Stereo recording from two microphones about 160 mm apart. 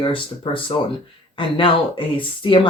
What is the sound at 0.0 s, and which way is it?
Speech, 35° left (ahead or behind).